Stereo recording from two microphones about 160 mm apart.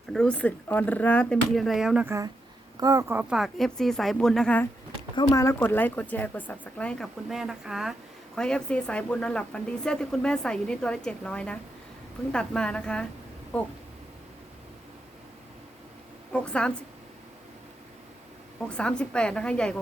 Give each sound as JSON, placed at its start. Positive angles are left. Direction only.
{"t": 0.1, "sound": "speech", "side_deg": 5}
{"t": 2.0, "sound": "a woman's voice", "side_deg": -20}
{"t": 5.1, "sound": "a woman's voice", "side_deg": 20}
{"t": 16.3, "sound": "speech", "side_deg": 5}
{"t": 18.8, "sound": "a woman's voice", "side_deg": 5}